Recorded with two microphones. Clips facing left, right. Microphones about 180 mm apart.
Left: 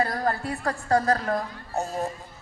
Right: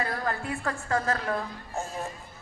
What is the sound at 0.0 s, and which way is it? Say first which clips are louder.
A woman's voice: left 5 dB; 35° left (ahead or behind).